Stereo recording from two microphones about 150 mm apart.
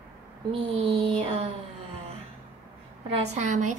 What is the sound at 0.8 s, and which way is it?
Speech, 35° right (ahead or behind).